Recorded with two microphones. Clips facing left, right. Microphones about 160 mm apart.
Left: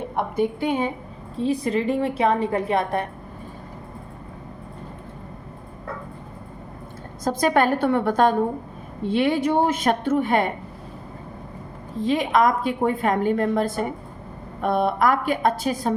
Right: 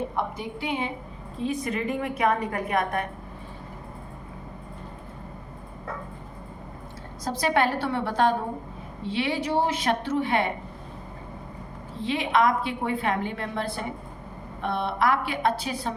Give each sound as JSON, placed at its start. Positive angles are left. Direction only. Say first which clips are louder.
{"t": 0.2, "sound": "a woman's voice", "louder": "left 7 dB", "side_deg": 50}
{"t": 1.4, "sound": "a woman's voice", "louder": "left 6 dB", "side_deg": 30}
{"t": 7.3, "sound": "a woman's voice", "louder": "left 5 dB", "side_deg": 45}
{"t": 11.9, "sound": "a woman's voice", "louder": "left 4 dB", "side_deg": 40}